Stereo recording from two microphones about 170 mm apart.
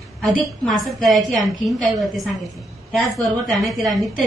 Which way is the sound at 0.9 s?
Centre (ahead or behind).